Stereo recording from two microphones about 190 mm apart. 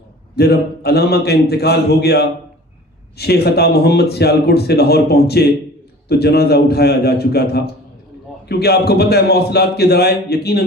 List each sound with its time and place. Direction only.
0.3 s a man's voice: 60° left (ahead or behind)